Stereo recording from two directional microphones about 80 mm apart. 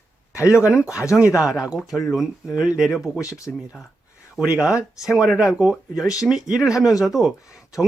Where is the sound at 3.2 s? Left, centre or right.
Left.